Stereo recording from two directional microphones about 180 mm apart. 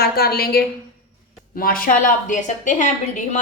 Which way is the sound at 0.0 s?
60° left (ahead or behind).